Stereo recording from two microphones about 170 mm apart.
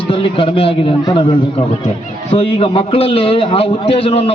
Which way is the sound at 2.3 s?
35° left (ahead or behind).